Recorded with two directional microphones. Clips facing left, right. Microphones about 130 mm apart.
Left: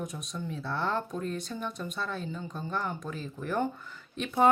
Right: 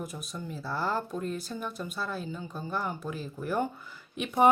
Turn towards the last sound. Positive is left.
turn(degrees=-10)  # may be behind; listen again after turning